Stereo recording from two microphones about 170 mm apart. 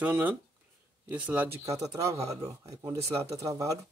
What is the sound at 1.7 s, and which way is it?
Speech, 20° right (ahead or behind).